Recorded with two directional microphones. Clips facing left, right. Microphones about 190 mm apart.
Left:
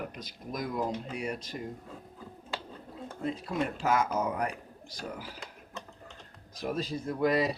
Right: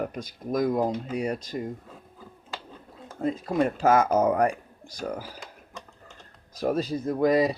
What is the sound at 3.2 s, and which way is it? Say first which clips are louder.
Speech: right 7 dB; 45° right (ahead or behind).